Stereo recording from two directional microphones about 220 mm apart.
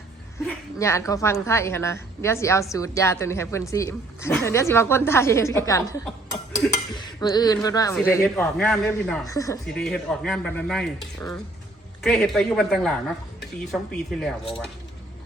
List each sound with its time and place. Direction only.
0.4 s a woman's voice: 15° left (ahead or behind)
9.2 s a woman's voice: 15° left (ahead or behind)
9.7 s speech: 5° left (ahead or behind)